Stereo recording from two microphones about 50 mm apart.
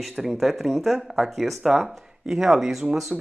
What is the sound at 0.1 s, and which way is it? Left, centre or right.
Speech, centre.